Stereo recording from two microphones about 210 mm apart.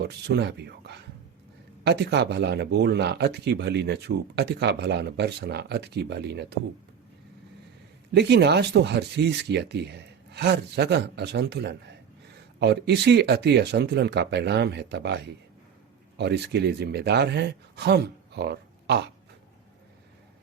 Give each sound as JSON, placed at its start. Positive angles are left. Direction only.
{"t": 0.0, "sound": "speech", "side_deg": -50}
{"t": 8.1, "sound": "speech", "side_deg": -55}